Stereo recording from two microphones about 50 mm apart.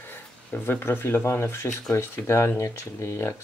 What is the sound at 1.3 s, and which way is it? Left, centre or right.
Speech, left.